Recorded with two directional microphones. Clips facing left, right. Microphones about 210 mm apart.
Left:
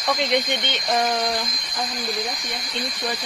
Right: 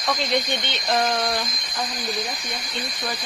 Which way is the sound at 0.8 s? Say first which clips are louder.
Even; 5° left (ahead or behind).